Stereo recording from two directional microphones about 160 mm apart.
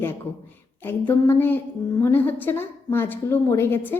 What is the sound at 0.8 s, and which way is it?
A woman's voice, 10° left (ahead or behind).